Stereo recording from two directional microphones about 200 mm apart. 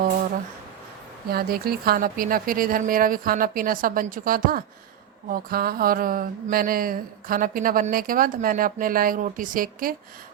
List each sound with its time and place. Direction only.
1.3 s mantra: 50° right (ahead or behind)